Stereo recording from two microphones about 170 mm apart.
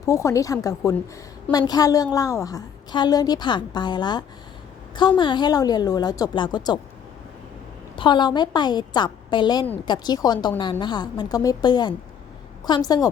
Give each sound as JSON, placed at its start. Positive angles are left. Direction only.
{"t": 0.0, "sound": "a woman's voice", "side_deg": 20}
{"t": 7.9, "sound": "a woman's voice", "side_deg": 25}